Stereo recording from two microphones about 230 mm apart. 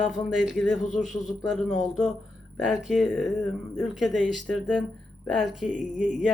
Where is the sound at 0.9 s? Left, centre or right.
Left.